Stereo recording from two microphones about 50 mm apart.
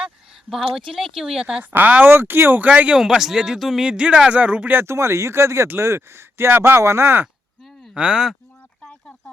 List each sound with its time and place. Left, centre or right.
0.5 s a man's voice: centre
1.7 s speech: right
2.1 s speech: right
2.6 s speech: right
2.9 s a man's voice: centre
3.8 s speech: right
4.7 s speech: right
5.6 s speech: right
6.7 s speech: right
7.9 s speech: right
8.8 s a sound: centre